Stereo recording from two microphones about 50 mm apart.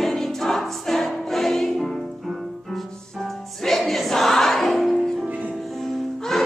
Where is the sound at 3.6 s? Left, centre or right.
Centre.